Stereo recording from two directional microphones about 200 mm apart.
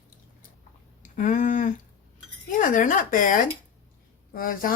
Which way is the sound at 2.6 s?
40° left (ahead or behind).